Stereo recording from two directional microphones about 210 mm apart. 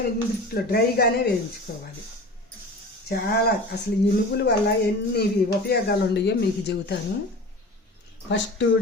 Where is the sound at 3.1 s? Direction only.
45° left (ahead or behind).